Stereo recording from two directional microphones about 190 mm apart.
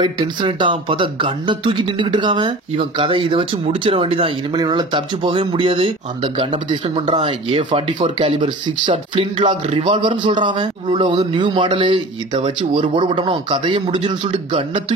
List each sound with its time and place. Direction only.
0.0 s speech: 25° right (ahead or behind)